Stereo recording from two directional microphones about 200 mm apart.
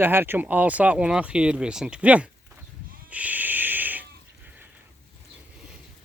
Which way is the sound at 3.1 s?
5° right (ahead or behind).